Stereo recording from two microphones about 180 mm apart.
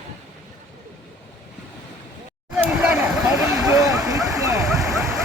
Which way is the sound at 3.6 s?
15° right (ahead or behind).